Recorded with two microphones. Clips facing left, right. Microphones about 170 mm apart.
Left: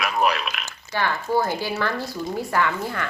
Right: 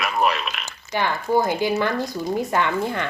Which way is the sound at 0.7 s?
15° right (ahead or behind).